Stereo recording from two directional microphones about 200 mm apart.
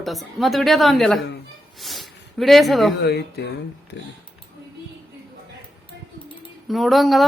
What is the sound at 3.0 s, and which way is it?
Speech, 55° left (ahead or behind).